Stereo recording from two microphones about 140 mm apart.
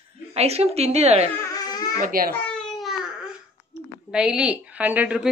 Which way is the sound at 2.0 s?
85° right.